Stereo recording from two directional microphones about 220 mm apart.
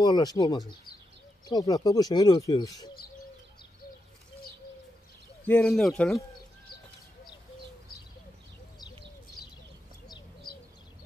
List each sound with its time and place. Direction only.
0.0 s speech: 20° left (ahead or behind)
5.4 s speech: 5° left (ahead or behind)